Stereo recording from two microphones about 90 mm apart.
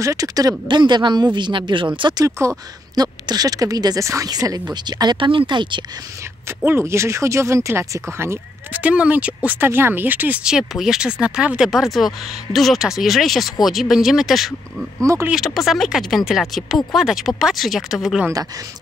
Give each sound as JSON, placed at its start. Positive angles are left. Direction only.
{"t": 0.0, "sound": "speech", "side_deg": -40}
{"t": 0.7, "sound": "speech", "side_deg": -55}
{"t": 2.1, "sound": "speech", "side_deg": -35}
{"t": 3.0, "sound": "speech", "side_deg": -45}
{"t": 5.1, "sound": "speech", "side_deg": -70}
{"t": 6.6, "sound": "speech", "side_deg": -25}
{"t": 8.7, "sound": "speech", "side_deg": -15}
{"t": 10.4, "sound": "speech", "side_deg": -5}